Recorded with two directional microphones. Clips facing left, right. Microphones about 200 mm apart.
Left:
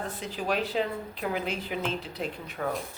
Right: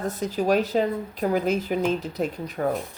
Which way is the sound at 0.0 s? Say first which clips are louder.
Right 8 dB; 40° right (ahead or behind).